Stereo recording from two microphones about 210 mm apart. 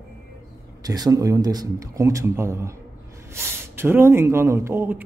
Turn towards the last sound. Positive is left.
turn(degrees=-10)  # may be behind; listen again after turning